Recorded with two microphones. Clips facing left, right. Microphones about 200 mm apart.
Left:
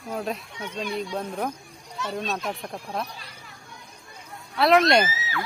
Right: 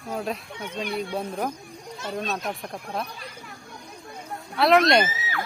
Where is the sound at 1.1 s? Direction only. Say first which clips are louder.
Right 1 dB; 10° right (ahead or behind).